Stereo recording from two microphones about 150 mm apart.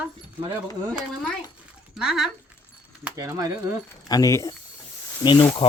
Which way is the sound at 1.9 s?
Centre (ahead or behind).